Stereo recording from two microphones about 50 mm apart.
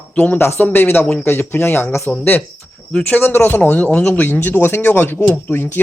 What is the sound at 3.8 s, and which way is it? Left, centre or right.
Speech, left.